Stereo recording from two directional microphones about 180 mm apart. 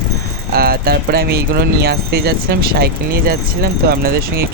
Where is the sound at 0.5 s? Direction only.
55° right (ahead or behind).